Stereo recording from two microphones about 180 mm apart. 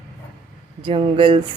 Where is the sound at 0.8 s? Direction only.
30° right (ahead or behind).